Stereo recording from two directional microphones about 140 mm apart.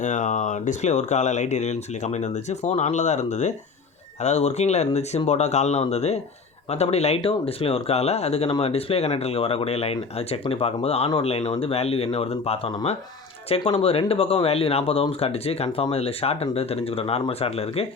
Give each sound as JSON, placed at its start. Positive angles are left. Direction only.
{"t": 0.0, "sound": "speech", "side_deg": 60}